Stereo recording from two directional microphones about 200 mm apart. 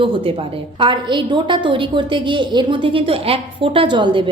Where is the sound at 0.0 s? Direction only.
25° right (ahead or behind).